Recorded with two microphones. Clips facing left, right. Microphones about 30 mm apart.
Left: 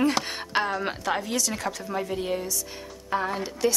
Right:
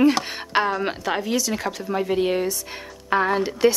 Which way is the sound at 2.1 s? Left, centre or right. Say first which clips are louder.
Right 7 dB; right.